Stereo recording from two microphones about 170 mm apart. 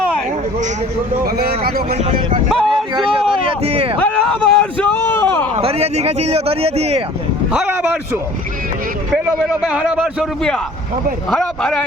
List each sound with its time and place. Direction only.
1.2 s speech: 65° right (ahead or behind)
2.0 s speech: 40° right (ahead or behind)
2.5 s vehicle: 5° right (ahead or behind)
2.9 s a sound: 30° right (ahead or behind)
3.9 s a sound: 5° left (ahead or behind)
5.5 s speech: 35° right (ahead or behind)
7.5 s a man's voice: 5° right (ahead or behind)